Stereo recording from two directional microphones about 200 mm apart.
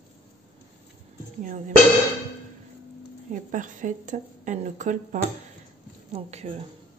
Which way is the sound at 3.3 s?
40° right (ahead or behind).